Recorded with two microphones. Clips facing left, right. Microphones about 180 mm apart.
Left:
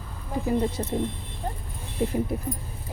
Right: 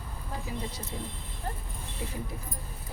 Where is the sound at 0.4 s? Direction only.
55° left (ahead or behind).